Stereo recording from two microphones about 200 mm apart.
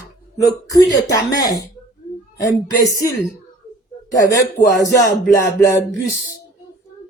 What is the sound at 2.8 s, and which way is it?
Speech, 15° left (ahead or behind).